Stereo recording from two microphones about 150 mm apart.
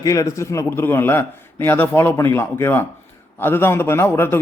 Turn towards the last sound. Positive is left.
turn(degrees=15)  # may be behind; listen again after turning